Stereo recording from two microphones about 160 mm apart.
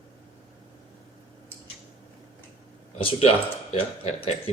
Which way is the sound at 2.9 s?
35° left (ahead or behind).